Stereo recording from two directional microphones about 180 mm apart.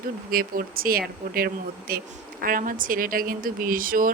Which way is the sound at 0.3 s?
55° right (ahead or behind).